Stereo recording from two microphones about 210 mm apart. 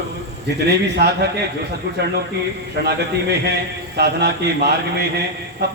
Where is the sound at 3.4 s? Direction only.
50° right (ahead or behind).